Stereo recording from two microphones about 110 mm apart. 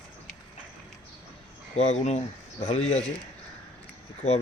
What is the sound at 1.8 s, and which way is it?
Speech, 80° left.